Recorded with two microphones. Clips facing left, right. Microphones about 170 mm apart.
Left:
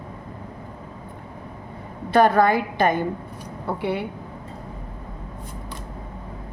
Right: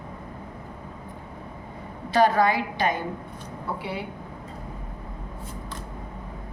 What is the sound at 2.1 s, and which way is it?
A woman's voice, 55° left (ahead or behind).